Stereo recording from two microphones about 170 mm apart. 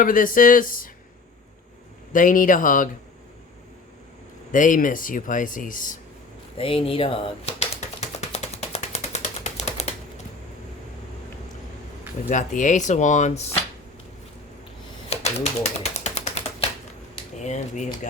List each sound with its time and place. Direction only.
0.0 s speech: 55° left (ahead or behind)
2.1 s speech: 50° left (ahead or behind)
4.5 s speech: 50° left (ahead or behind)
6.6 s typewriter: 35° left (ahead or behind)
12.3 s speech: 50° left (ahead or behind)
15.1 s typewriter: 40° left (ahead or behind)
17.3 s speech: 45° left (ahead or behind)